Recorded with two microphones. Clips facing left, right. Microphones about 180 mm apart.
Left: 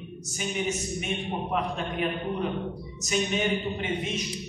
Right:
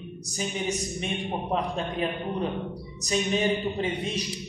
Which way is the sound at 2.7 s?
35° right (ahead or behind).